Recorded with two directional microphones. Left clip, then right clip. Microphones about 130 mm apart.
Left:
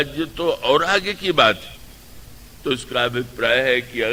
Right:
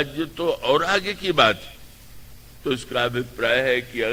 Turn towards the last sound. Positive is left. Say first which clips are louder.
# left 3 dB
turn(degrees=40)  # may be behind; listen again after turning